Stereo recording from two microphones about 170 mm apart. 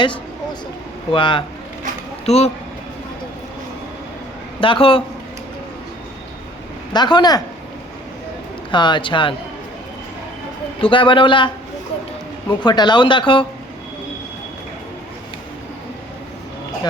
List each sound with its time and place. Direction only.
1.1 s a man's voice: 30° left (ahead or behind)
4.6 s a man's voice: 30° left (ahead or behind)
6.9 s speech: 25° left (ahead or behind)
8.7 s speech: 25° left (ahead or behind)
10.8 s speech: 30° left (ahead or behind)